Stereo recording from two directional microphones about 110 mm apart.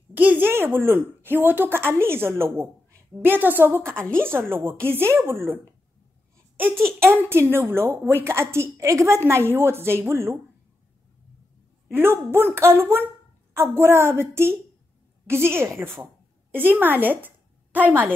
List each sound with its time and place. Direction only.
0.1 s a woman's voice: 15° right (ahead or behind)
3.8 s a woman's voice: 10° left (ahead or behind)
4.2 s a woman's voice: 20° right (ahead or behind)
6.3 s a sound: 20° right (ahead or behind)
7.1 s a woman's voice: 20° right (ahead or behind)
11.9 s a woman's voice: 20° right (ahead or behind)